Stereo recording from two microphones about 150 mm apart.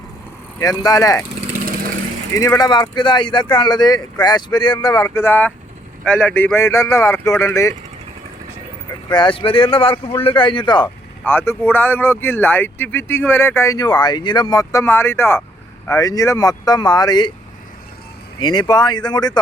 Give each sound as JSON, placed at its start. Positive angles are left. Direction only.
{"t": 0.6, "sound": "speech", "side_deg": 25}
{"t": 2.3, "sound": "speech", "side_deg": 20}
{"t": 9.0, "sound": "speech", "side_deg": 30}
{"t": 11.3, "sound": "speech", "side_deg": 15}
{"t": 18.3, "sound": "speech", "side_deg": 30}